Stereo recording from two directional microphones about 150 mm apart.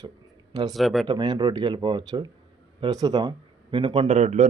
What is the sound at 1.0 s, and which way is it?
Speech, 30° right (ahead or behind).